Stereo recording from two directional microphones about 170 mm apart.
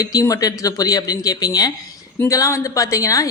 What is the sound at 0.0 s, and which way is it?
A woman's voice, 20° left (ahead or behind).